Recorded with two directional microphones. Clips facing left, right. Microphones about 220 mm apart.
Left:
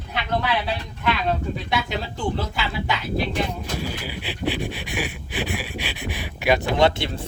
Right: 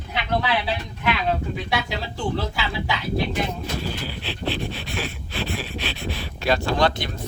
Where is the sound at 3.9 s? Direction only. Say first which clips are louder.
Even; 10° left (ahead or behind).